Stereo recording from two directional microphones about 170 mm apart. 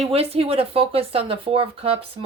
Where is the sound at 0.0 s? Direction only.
35° right (ahead or behind).